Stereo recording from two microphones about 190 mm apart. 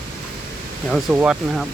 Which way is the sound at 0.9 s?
5° right (ahead or behind).